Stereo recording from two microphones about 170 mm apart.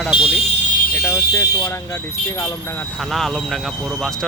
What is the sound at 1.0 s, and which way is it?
Speech, 15° left (ahead or behind).